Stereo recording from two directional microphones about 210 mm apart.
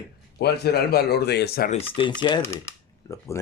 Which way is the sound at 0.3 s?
50° left (ahead or behind).